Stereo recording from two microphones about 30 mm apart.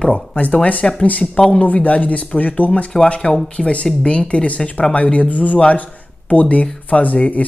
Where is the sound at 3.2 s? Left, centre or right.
Left.